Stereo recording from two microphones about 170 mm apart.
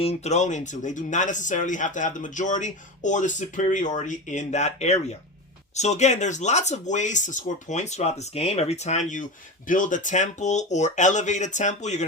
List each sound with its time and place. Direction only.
0.0 s speech: 40° left (ahead or behind)